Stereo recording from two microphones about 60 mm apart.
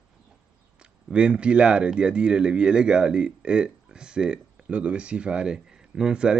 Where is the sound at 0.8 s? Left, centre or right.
Centre.